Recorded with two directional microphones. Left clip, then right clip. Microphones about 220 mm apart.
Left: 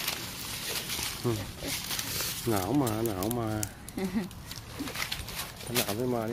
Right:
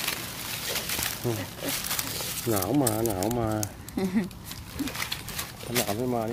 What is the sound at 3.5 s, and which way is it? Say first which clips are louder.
Speech: right 5 dB; 15° right (ahead or behind).